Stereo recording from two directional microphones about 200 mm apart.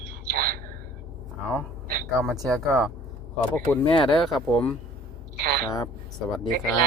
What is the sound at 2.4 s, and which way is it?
Speech, 15° right (ahead or behind).